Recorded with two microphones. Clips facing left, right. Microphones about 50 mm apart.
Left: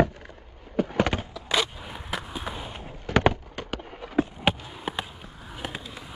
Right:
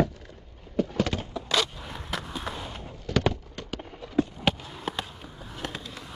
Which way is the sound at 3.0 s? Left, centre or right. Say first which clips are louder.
Left 4 dB; left.